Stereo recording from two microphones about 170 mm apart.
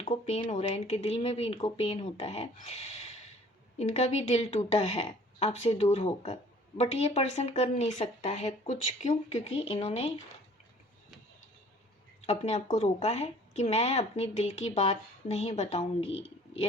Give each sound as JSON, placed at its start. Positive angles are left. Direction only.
{"t": 0.0, "sound": "a woman's voice", "side_deg": 40}
{"t": 12.2, "sound": "a woman's voice", "side_deg": 40}